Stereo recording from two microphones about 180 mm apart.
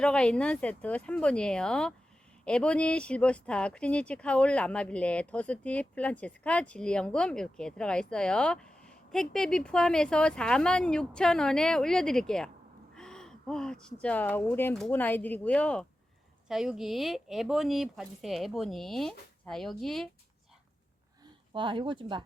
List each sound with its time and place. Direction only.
0.0 s speech: 5° left (ahead or behind)
21.5 s speech: 30° right (ahead or behind)